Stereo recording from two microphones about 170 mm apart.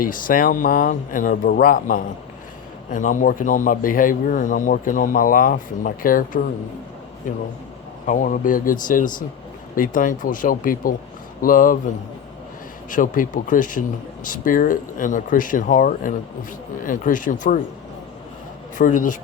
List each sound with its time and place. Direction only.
0.0 s a man's voice: 55° left (ahead or behind)
12.9 s a man's voice: 50° left (ahead or behind)
18.8 s a man's voice: 50° left (ahead or behind)